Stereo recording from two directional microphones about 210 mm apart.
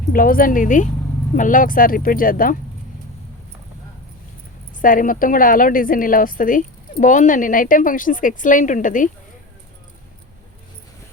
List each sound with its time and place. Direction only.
0.1 s a woman's voice: 40° left (ahead or behind)
4.8 s a woman's voice: 40° left (ahead or behind)